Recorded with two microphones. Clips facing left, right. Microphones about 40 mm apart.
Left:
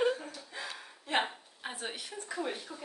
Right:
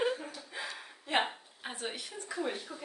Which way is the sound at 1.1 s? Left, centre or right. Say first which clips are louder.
Right 1 dB; centre.